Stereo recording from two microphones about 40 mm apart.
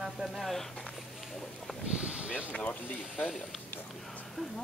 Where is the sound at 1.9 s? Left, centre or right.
Right.